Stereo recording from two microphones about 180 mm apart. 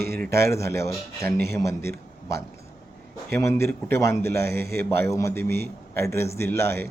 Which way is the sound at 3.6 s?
15° left (ahead or behind).